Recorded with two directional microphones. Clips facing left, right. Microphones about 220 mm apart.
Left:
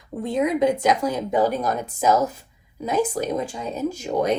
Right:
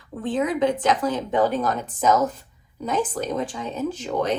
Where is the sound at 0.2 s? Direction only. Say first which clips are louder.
Left 1 dB; 10° left (ahead or behind).